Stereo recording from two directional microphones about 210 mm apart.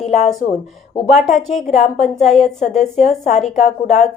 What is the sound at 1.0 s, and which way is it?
A woman's voice, 35° left (ahead or behind).